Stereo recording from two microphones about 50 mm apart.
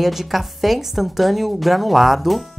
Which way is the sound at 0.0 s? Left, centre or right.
Centre.